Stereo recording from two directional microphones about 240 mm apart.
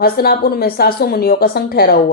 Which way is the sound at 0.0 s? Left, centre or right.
Left.